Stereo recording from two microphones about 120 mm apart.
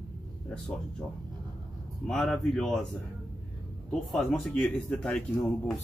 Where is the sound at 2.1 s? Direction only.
5° left (ahead or behind).